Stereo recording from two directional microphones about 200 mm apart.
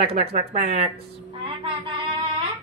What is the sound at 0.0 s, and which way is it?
Speech, 30° right (ahead or behind).